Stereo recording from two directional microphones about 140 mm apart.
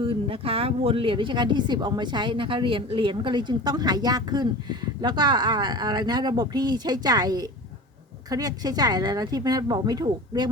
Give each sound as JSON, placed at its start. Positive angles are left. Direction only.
{"t": 0.0, "sound": "speech", "side_deg": -40}